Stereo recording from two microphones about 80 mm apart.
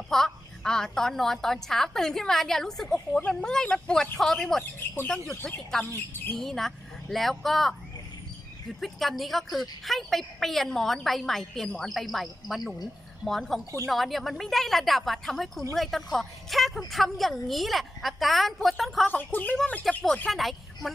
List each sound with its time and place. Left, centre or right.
0.1 s a woman's voice: centre
8.8 s a woman's voice: centre
19.0 s a woman's voice: left
20.2 s speech: centre